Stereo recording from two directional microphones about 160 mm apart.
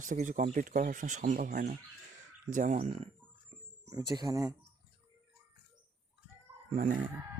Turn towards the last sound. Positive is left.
turn(degrees=-60)  # may be behind; listen again after turning